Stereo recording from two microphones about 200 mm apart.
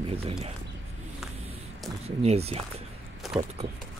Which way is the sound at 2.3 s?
30° right (ahead or behind).